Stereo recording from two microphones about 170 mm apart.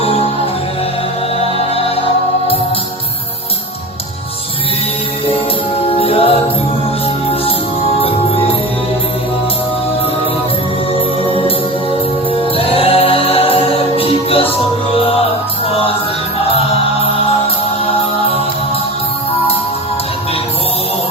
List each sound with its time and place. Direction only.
1.4 s music: 35° left (ahead or behind)
5.8 s music: 35° left (ahead or behind)
12.3 s music: 30° left (ahead or behind)
16.5 s music: 35° left (ahead or behind)